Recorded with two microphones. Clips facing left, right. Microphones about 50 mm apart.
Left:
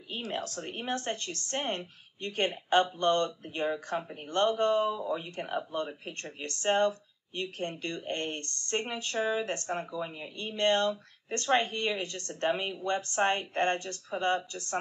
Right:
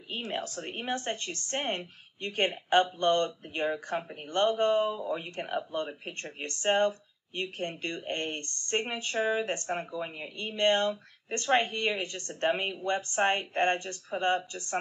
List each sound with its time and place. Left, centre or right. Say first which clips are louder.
0.1 s speech: right 1 dB; right